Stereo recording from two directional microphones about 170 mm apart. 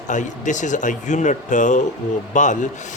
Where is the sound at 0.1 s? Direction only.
45° left (ahead or behind).